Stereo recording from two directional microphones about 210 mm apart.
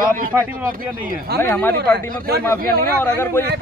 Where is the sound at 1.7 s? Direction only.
50° right (ahead or behind).